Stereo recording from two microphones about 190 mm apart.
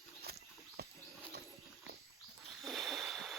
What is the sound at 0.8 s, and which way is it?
Wild animals, 55° right (ahead or behind).